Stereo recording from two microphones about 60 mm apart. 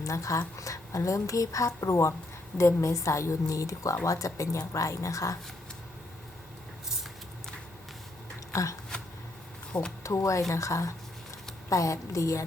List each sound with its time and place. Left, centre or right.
0.0 s a woman's voice: left
8.5 s a woman's voice: left
8.9 s shuffling cards: centre
10.0 s a woman's voice: left